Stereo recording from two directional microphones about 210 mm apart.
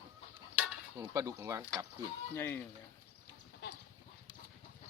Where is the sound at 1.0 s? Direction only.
15° right (ahead or behind).